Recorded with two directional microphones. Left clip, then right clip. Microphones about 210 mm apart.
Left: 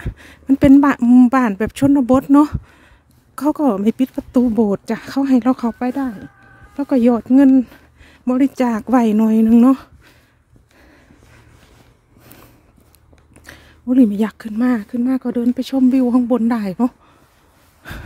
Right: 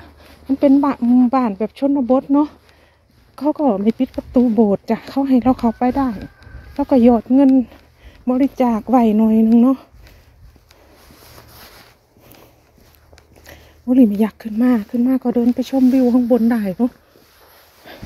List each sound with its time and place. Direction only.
0.6 s speech: 35° left (ahead or behind)
5.8 s speech: 15° left (ahead or behind); by 9.8 s 35° left (ahead or behind)
13.5 s speech: 20° left (ahead or behind)
17.8 s a sound: 30° left (ahead or behind)